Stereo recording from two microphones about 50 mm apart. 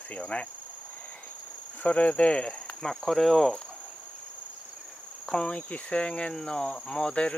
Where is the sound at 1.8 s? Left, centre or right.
Left.